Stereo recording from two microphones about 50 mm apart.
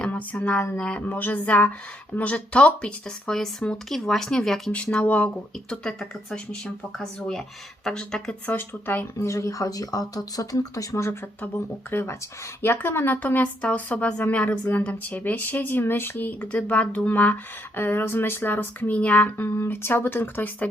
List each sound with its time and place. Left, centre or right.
0.0 s speech: left
1.0 s speech: left
3.8 s speech: centre
4.7 s speech: left
5.7 s speech: centre
8.4 s speech: left
9.1 s speech: left
10.9 s speech: left
11.9 s speech: left
13.1 s speech: left
16.5 s speech: left
17.7 s speech: left
19.4 s speech: left